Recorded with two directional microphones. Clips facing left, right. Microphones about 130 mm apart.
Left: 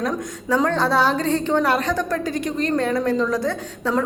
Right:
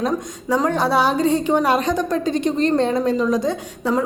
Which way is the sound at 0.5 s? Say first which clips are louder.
Right 1 dB; 15° right (ahead or behind).